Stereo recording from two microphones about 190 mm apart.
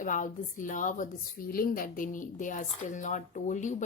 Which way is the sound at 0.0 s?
45° left (ahead or behind).